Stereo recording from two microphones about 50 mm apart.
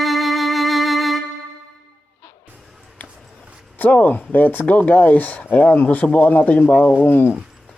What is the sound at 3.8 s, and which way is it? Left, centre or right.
Speech, left.